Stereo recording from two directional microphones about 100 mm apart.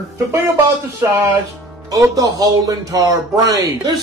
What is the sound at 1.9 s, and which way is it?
A man's voice, 35° right (ahead or behind).